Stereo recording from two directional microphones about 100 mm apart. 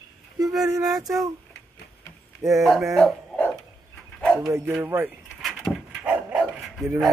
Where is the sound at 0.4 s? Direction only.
35° right (ahead or behind).